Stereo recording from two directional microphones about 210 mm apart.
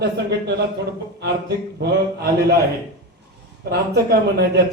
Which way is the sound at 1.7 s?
50° right (ahead or behind).